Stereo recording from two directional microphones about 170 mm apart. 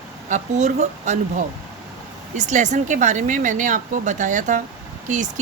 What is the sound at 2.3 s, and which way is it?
Speech, 45° right (ahead or behind).